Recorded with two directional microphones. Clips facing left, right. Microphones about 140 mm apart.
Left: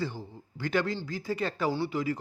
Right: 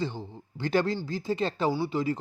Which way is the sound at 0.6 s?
30° right (ahead or behind).